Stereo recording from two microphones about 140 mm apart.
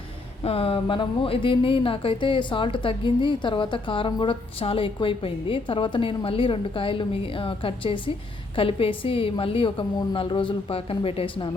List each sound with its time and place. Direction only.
0.4 s speech: 40° left (ahead or behind)